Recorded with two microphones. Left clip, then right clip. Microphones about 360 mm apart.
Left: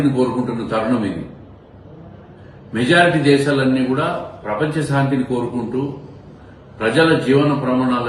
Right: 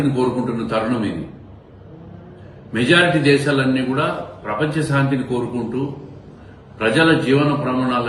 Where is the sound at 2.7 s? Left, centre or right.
Centre.